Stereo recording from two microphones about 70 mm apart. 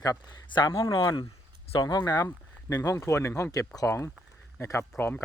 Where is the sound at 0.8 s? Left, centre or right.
Left.